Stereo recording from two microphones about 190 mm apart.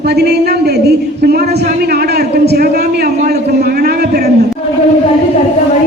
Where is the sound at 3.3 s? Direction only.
55° right (ahead or behind).